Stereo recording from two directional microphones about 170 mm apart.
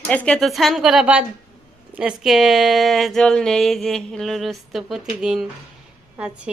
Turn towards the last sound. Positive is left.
turn(degrees=-5)  # may be behind; listen again after turning